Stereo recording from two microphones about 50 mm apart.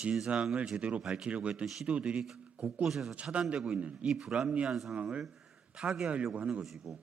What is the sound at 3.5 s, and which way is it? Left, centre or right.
Speech, centre.